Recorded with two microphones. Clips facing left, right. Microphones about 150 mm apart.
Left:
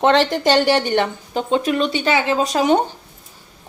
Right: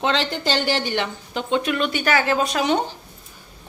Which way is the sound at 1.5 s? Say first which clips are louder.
Left 3 dB; 35° left (ahead or behind).